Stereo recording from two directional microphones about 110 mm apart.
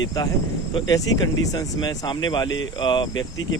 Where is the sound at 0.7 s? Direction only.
40° left (ahead or behind).